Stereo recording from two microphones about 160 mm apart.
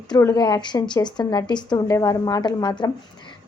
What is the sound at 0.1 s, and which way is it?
A woman's voice, 25° left (ahead or behind).